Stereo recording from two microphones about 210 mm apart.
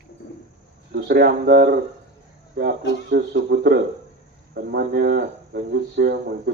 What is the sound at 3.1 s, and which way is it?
Speech, 55° right (ahead or behind).